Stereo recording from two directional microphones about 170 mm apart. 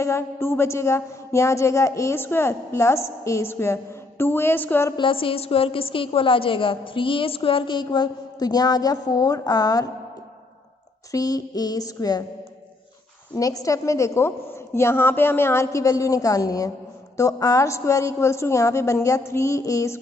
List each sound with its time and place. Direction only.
0.0 s a woman's voice: 15° left (ahead or behind)
4.9 s a woman's voice: 30° left (ahead or behind)
11.1 s a sound: 20° left (ahead or behind)
13.3 s a woman's voice: 20° left (ahead or behind)